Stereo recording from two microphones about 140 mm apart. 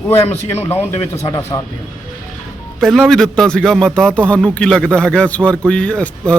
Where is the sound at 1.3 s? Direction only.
25° left (ahead or behind).